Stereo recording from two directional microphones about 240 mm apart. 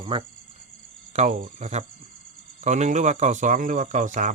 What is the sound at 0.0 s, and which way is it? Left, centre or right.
Speech, centre.